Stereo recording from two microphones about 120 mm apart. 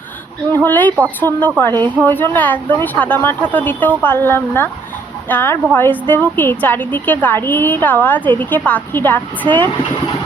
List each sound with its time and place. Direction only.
0.5 s speech: 15° left (ahead or behind)